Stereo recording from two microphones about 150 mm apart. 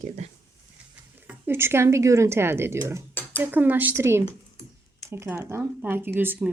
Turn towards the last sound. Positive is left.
turn(degrees=-10)  # may be behind; listen again after turning